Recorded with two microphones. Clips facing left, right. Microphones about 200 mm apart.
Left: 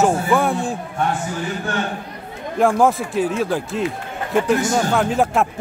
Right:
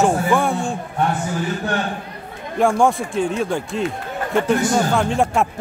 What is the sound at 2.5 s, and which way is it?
Speech, centre (ahead or behind).